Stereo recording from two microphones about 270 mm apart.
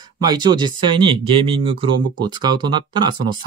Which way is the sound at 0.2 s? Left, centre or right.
Centre.